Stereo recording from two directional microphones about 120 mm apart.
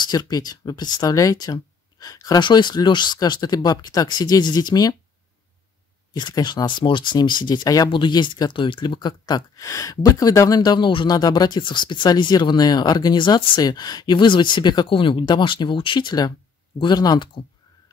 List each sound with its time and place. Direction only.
0.0 s speech: 35° left (ahead or behind)
6.1 s speech: 40° left (ahead or behind)